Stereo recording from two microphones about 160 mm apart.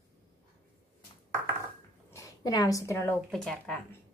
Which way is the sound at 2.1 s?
20° left (ahead or behind).